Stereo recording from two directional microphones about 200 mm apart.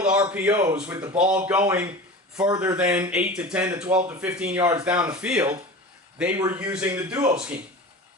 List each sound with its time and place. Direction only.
0.0 s speech: 5° right (ahead or behind)
4.6 s speech: 20° right (ahead or behind)
4.9 s speech: 5° right (ahead or behind)